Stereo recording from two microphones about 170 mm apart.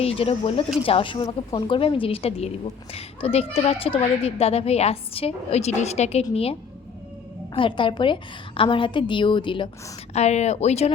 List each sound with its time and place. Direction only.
0.0 s a woman's voice: 35° left (ahead or behind)
10.1 s a woman's voice: 40° left (ahead or behind)